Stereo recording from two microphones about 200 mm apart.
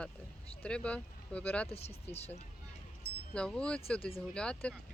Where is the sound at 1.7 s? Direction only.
30° left (ahead or behind).